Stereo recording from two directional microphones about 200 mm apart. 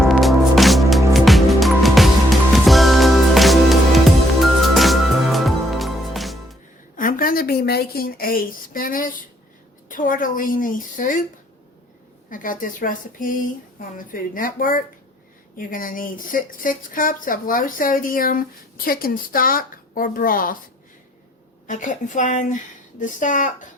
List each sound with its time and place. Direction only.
0.0 s music: centre (ahead or behind)
6.9 s a woman's voice: 45° left (ahead or behind)
12.3 s speech: 40° left (ahead or behind)
21.7 s a woman's voice: 40° left (ahead or behind)